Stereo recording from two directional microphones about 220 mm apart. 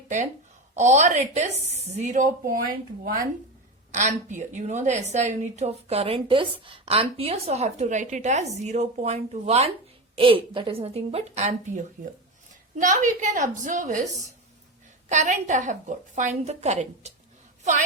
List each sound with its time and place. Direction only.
0.8 s a woman's voice: 30° right (ahead or behind)
3.9 s a woman's voice: 35° right (ahead or behind)
15.1 s a woman's voice: 35° right (ahead or behind)